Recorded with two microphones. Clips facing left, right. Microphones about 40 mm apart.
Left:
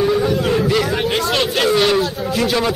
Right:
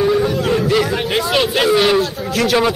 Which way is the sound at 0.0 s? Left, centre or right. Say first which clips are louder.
Right 1 dB; centre.